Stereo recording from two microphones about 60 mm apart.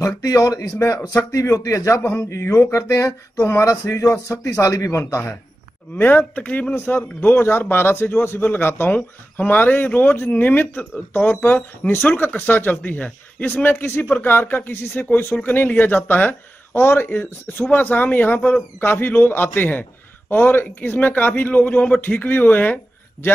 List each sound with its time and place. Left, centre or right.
0.0 s speech: left
0.6 s speech: left
1.3 s a man's voice: left
2.0 s a man's voice: left
5.9 s speech: left
6.7 s speech: left